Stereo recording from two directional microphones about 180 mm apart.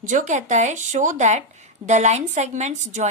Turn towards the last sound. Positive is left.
turn(degrees=-40)  # may be behind; listen again after turning